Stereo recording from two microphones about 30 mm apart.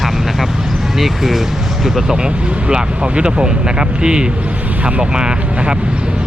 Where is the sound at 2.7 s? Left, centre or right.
Right.